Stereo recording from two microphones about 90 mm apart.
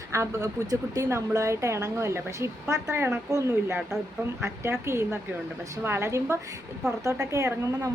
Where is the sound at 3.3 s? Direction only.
35° right (ahead or behind).